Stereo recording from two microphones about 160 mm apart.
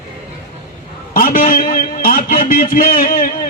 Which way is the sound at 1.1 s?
60° left (ahead or behind).